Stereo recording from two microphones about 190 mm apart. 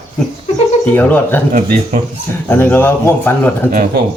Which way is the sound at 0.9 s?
10° left (ahead or behind).